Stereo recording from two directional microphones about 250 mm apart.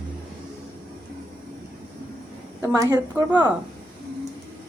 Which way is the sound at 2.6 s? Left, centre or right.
Centre.